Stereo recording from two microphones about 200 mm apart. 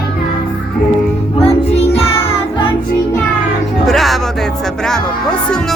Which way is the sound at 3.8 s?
Centre (ahead or behind).